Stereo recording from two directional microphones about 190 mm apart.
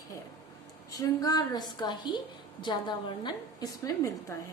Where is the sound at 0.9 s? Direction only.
20° left (ahead or behind).